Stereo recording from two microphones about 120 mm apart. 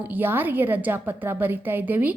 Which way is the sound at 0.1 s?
15° right (ahead or behind).